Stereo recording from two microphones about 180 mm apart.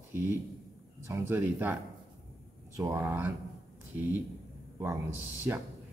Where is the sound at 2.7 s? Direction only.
15° right (ahead or behind).